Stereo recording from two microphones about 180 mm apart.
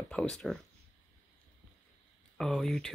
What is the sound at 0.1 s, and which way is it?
Speech, 5° left (ahead or behind).